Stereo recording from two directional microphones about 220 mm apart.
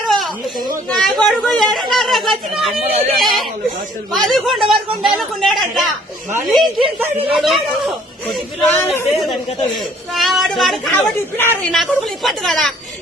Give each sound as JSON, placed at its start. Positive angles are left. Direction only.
{"t": 0.1, "sound": "a sound", "side_deg": 0}
{"t": 0.9, "sound": "speech", "side_deg": 0}
{"t": 10.2, "sound": "speech", "side_deg": 0}